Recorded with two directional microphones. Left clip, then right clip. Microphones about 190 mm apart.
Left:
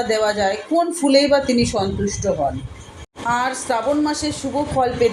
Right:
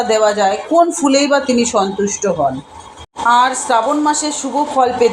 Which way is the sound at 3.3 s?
15° right (ahead or behind).